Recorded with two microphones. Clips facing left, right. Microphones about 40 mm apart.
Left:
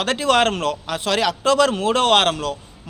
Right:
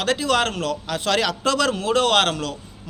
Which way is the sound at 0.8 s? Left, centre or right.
Centre.